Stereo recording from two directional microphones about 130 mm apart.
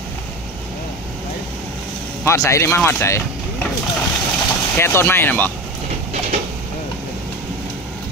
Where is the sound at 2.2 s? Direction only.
25° left (ahead or behind).